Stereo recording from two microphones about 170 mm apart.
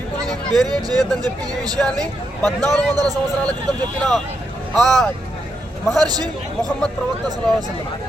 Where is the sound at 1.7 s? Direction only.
5° left (ahead or behind).